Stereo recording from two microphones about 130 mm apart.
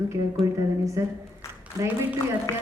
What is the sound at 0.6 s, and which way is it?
Speech, 25° right (ahead or behind).